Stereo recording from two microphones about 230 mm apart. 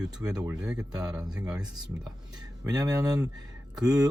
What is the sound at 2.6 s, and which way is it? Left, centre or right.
Speech, centre.